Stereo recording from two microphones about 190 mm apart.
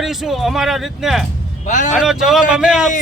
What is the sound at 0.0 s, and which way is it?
Speech, centre (ahead or behind).